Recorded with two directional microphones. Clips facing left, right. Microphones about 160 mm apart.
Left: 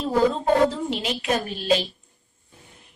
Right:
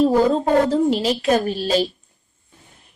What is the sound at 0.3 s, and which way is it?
A woman's voice, 40° right (ahead or behind).